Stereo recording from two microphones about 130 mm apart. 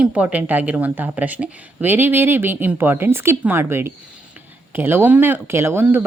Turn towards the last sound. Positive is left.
turn(degrees=-15)  # may be behind; listen again after turning